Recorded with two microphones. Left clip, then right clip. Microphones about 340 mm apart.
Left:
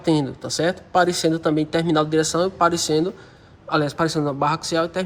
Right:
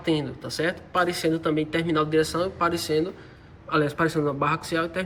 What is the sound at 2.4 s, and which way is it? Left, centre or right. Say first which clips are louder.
Speech: left 6 dB; centre.